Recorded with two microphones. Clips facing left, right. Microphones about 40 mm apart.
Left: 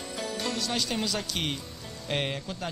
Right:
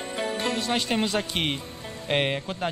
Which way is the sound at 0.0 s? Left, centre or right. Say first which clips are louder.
Right 5 dB; right.